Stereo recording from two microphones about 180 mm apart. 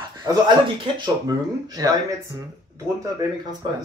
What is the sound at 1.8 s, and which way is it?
Speech, 20° right (ahead or behind).